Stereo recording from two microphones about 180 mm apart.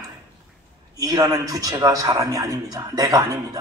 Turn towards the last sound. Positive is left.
turn(degrees=-20)  # may be behind; listen again after turning